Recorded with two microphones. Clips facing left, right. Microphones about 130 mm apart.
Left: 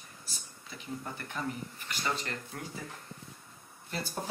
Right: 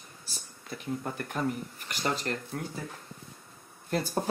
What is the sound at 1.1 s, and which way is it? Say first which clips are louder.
Speech: right 5 dB; 50° right (ahead or behind).